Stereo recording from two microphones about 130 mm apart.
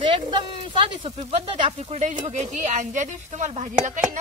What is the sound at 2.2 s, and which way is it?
Speech, 70° right (ahead or behind).